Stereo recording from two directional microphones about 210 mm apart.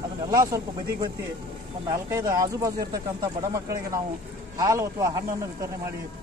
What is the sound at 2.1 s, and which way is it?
Speech, 15° right (ahead or behind).